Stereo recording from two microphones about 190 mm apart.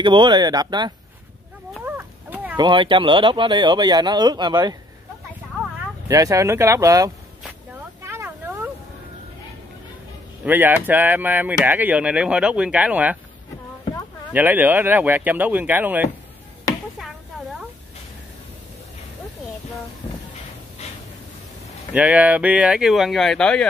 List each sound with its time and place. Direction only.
0.0 s speech: 25° right (ahead or behind)
1.9 s a sound: 10° right (ahead or behind)
2.5 s speech: 25° right (ahead or behind)
6.0 s speech: 15° right (ahead or behind)
8.0 s a sound: 10° right (ahead or behind)
10.4 s speech: 10° right (ahead or behind)
14.3 s speech: 10° right (ahead or behind)
21.9 s speech: 5° right (ahead or behind)